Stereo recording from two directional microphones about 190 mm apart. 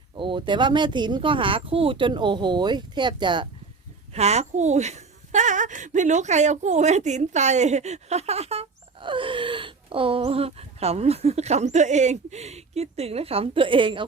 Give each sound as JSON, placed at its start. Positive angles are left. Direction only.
{"t": 0.2, "sound": "speech", "side_deg": -25}
{"t": 4.1, "sound": "a woman's voice", "side_deg": -35}